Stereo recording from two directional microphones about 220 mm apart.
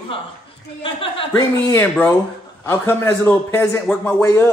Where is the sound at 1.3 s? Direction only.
10° left (ahead or behind).